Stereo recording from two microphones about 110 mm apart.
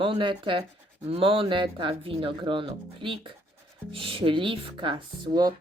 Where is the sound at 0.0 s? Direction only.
50° right (ahead or behind).